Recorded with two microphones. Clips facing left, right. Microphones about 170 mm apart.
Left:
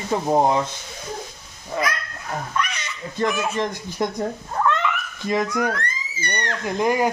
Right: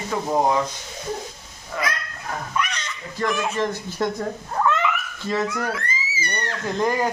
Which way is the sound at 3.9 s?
15° left (ahead or behind).